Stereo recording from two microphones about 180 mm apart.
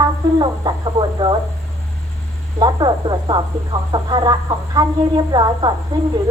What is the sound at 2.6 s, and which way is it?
Speech, 25° right (ahead or behind).